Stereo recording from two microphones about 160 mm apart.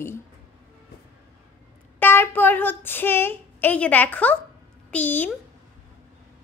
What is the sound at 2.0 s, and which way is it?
A child's voice, 15° left (ahead or behind).